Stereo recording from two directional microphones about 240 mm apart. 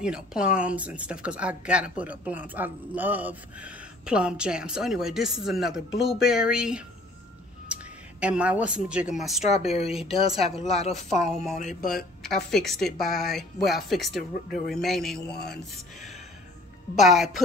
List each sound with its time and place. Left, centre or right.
0.0 s a woman's voice: centre
9.5 s speech: left
12.4 s speech: centre
16.9 s speech: centre